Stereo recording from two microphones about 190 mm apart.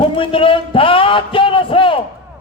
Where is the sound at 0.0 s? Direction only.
30° left (ahead or behind).